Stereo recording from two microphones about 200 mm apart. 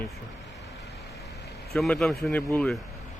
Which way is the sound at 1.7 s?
5° left (ahead or behind).